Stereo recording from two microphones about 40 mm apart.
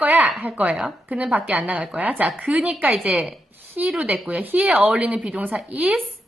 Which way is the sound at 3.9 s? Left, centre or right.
Right.